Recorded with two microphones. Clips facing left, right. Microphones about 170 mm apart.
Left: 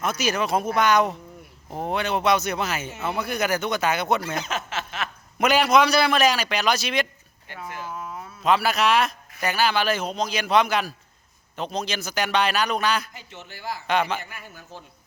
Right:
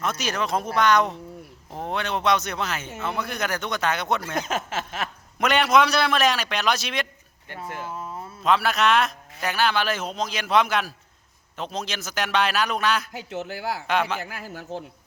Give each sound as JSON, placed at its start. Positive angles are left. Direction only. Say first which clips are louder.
{"t": 0.0, "sound": "a man's voice", "louder": "left 2 dB", "side_deg": 5}
{"t": 4.4, "sound": "speech", "louder": "right 2 dB", "side_deg": -50}
{"t": 5.4, "sound": "a man's voice", "louder": "left 1 dB", "side_deg": 0}
{"t": 8.4, "sound": "a man's voice", "louder": "even", "side_deg": 0}
{"t": 13.5, "sound": "speech", "louder": "even", "side_deg": -85}
{"t": 13.8, "sound": "a man's voice", "louder": "left 2 dB", "side_deg": 0}
{"t": 14.3, "sound": "a man's voice", "louder": "right 6 dB", "side_deg": -90}